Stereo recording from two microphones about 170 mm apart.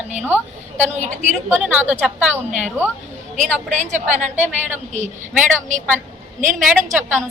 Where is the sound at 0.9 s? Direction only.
45° right (ahead or behind).